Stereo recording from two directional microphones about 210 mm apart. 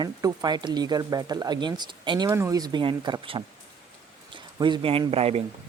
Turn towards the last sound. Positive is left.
turn(degrees=-30)  # may be behind; listen again after turning